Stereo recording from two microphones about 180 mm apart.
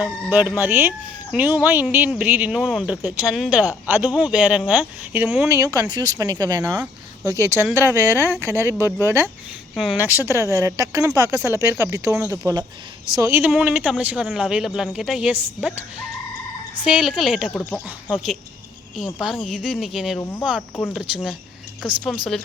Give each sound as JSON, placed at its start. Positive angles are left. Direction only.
{"t": 0.0, "sound": "speech", "side_deg": -10}
{"t": 5.5, "sound": "speech", "side_deg": -15}
{"t": 9.7, "sound": "speech", "side_deg": 0}
{"t": 10.0, "sound": "speech", "side_deg": -10}
{"t": 16.8, "sound": "speech", "side_deg": -5}
{"t": 17.5, "sound": "speech", "side_deg": 10}
{"t": 17.8, "sound": "speech", "side_deg": -5}